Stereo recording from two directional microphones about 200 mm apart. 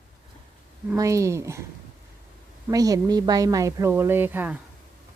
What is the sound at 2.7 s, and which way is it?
Speech, 20° right (ahead or behind).